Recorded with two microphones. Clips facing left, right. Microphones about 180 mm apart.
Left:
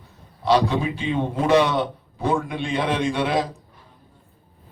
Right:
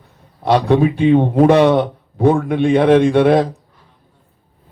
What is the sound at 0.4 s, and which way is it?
A man's voice, 55° right (ahead or behind).